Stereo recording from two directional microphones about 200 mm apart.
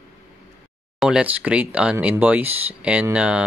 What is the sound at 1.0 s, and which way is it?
Speech, 5° right (ahead or behind).